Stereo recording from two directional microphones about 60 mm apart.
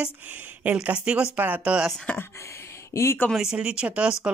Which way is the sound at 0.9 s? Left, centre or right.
Centre.